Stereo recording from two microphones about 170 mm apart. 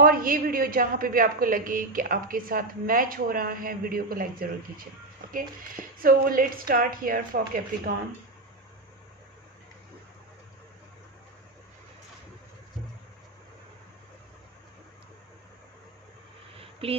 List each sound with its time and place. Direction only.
0.0 s a woman's voice: 60° right (ahead or behind)
6.0 s a woman's voice: 55° right (ahead or behind)
16.6 s a sound: 35° right (ahead or behind)